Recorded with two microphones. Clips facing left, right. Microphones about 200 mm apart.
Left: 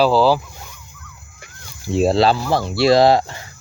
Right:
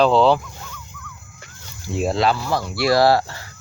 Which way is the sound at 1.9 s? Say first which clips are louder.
Left 5 dB; 30° left (ahead or behind).